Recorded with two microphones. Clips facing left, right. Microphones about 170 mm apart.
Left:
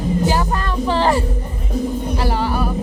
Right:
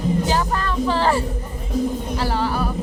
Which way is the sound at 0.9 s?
15° left (ahead or behind).